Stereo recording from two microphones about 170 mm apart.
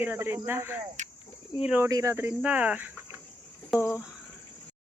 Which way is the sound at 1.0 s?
45° right (ahead or behind).